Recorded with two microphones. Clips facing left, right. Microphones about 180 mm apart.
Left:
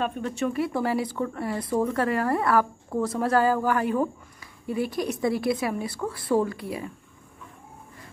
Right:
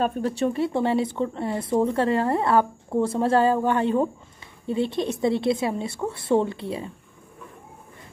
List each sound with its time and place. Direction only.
0.0 s speech: 35° right (ahead or behind)